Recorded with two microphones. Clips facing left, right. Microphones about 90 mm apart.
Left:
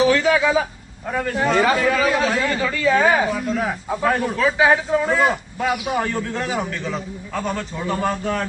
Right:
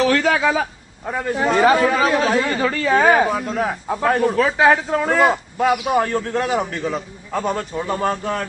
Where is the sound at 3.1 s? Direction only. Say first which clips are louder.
Right 3 dB; 55° right (ahead or behind).